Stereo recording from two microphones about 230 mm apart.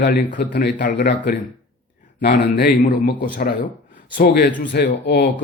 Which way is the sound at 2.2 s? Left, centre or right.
Left.